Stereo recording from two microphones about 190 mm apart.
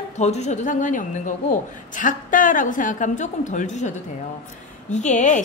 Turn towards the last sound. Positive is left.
turn(degrees=40)  # may be behind; listen again after turning